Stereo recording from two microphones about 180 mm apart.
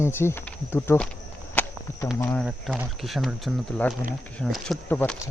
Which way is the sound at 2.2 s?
10° left (ahead or behind).